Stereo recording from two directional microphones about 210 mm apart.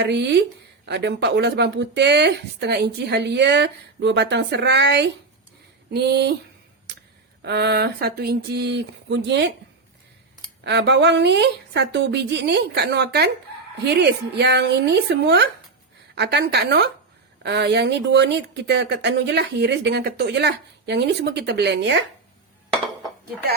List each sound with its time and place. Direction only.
0.0 s a woman's voice: 55° right (ahead or behind)
7.4 s speech: 50° right (ahead or behind)
10.6 s a woman's voice: 55° right (ahead or behind)